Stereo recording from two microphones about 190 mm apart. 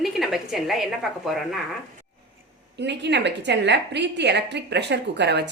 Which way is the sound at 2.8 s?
65° right (ahead or behind).